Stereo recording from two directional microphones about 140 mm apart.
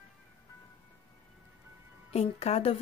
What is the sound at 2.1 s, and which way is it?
Speech, 45° left (ahead or behind).